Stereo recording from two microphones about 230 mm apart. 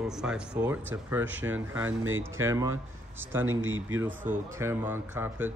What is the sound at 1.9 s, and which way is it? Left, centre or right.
Speech, right.